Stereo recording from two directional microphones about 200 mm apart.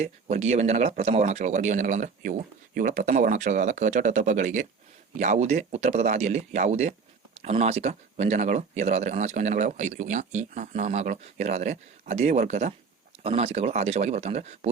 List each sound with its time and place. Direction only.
0.0 s speech: 35° right (ahead or behind)